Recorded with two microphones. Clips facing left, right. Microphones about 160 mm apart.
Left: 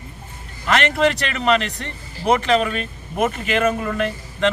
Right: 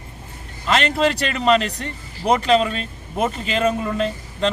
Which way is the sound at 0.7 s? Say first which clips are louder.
Left 1 dB; 30° right (ahead or behind).